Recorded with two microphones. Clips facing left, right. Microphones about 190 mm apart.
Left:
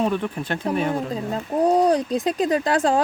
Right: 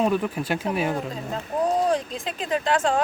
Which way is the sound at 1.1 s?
35° left (ahead or behind).